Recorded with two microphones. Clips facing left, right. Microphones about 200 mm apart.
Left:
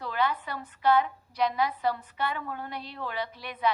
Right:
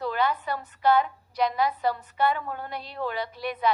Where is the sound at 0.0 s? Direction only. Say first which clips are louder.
Right 3 dB; 40° right (ahead or behind).